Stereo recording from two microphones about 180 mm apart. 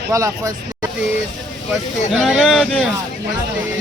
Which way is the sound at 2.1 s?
Centre (ahead or behind).